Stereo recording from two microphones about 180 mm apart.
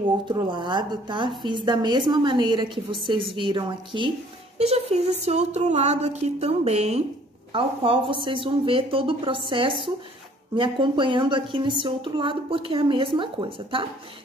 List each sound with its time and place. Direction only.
0.3 s a woman's voice: 25° right (ahead or behind)
4.6 s a sound: 35° right (ahead or behind)
7.5 s a woman's voice: 30° right (ahead or behind)